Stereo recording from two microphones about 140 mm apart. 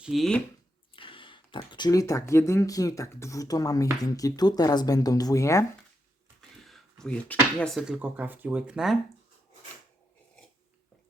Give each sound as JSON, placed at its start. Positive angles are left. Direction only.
{"t": 0.0, "sound": "speech", "side_deg": 0}
{"t": 0.9, "sound": "speech", "side_deg": 40}
{"t": 6.6, "sound": "speech", "side_deg": 0}
{"t": 7.8, "sound": "speech", "side_deg": -10}